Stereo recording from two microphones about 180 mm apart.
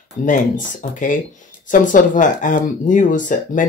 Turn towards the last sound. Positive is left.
turn(degrees=45)  # may be behind; listen again after turning